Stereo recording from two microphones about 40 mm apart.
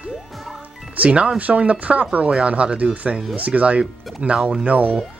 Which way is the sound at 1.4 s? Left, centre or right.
Right.